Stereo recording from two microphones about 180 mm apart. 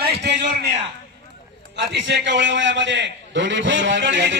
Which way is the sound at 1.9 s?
75° right (ahead or behind).